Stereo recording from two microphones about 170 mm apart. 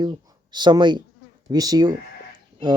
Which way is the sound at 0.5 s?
25° right (ahead or behind).